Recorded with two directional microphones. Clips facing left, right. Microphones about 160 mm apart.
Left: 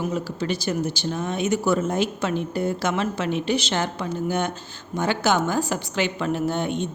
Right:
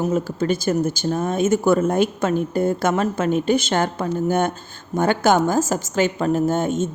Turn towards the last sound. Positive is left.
turn(degrees=-45)  # may be behind; listen again after turning